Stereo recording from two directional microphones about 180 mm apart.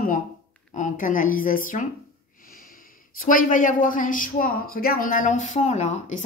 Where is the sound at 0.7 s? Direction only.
45° left (ahead or behind).